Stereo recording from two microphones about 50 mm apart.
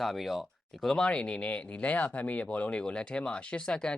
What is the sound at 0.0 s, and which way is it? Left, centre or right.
Speech, centre.